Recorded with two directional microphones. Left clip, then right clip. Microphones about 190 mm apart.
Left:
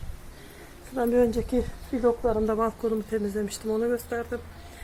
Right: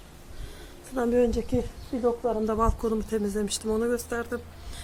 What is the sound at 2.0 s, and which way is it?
Speech, 25° left (ahead or behind).